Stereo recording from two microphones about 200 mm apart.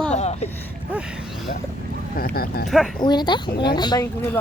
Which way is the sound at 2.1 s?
50° left (ahead or behind).